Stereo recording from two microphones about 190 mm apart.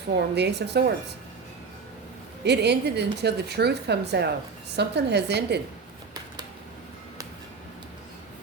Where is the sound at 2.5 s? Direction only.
60° right (ahead or behind).